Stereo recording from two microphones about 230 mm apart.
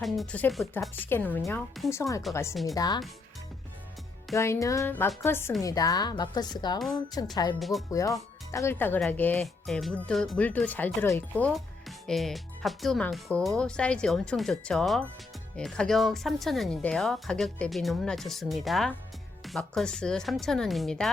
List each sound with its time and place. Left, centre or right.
0.0 s speech: centre
4.4 s speech: centre
7.6 s speech: centre
7.9 s speech: centre